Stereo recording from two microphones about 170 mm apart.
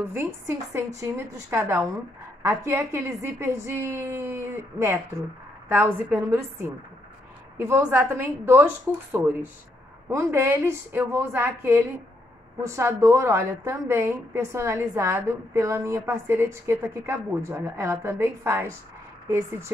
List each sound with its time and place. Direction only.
0.1 s a woman's voice: 15° right (ahead or behind)